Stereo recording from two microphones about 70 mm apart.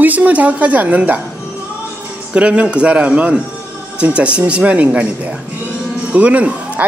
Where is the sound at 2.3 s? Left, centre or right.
Centre.